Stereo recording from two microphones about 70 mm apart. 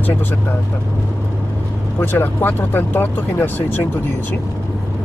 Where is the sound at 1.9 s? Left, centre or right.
Left.